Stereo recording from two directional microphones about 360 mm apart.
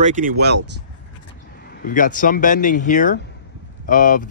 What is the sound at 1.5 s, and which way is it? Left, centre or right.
Speech, left.